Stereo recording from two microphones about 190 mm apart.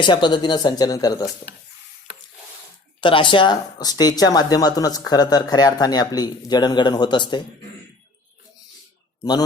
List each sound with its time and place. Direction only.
0.0 s speech: 25° left (ahead or behind)
3.0 s speech: 25° left (ahead or behind)